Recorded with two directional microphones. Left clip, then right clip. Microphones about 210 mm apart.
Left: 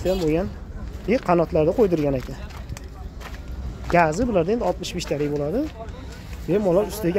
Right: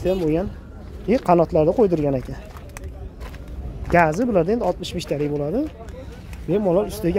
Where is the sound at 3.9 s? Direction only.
15° right (ahead or behind).